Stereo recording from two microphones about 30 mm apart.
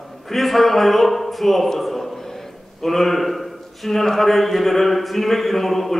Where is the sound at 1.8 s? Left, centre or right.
Centre.